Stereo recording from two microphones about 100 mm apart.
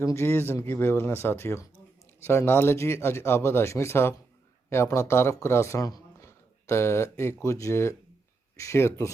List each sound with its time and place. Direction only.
0.0 s speech: 30° left (ahead or behind)